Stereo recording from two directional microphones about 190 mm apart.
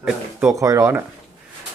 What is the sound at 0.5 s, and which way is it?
Speech, 15° right (ahead or behind).